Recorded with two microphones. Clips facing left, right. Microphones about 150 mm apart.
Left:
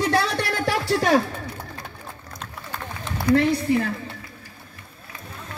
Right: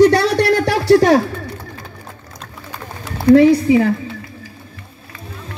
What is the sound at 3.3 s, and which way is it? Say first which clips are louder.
Speech: right 10 dB; 75° right (ahead or behind).